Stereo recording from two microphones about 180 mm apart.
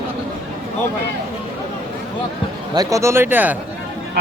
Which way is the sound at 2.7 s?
20° right (ahead or behind).